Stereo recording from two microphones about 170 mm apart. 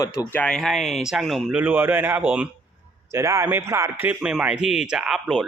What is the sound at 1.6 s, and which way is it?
A man's voice, 10° right (ahead or behind).